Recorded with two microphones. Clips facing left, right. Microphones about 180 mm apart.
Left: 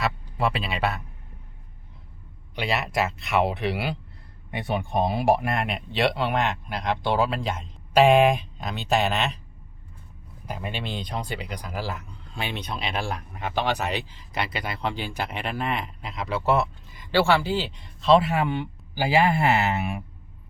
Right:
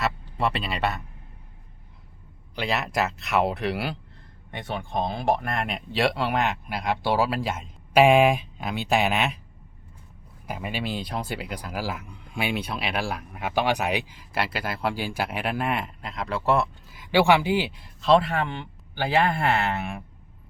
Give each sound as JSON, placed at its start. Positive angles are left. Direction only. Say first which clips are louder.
{"t": 0.0, "sound": "speech", "louder": "even", "side_deg": 0}
{"t": 2.6, "sound": "speech", "louder": "even", "side_deg": 0}
{"t": 4.5, "sound": "speech", "louder": "left 3 dB", "side_deg": 10}
{"t": 10.4, "sound": "speech", "louder": "right 2 dB", "side_deg": -10}